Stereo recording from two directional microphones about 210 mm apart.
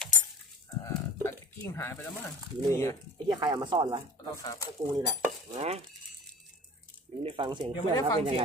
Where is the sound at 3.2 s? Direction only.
20° right (ahead or behind).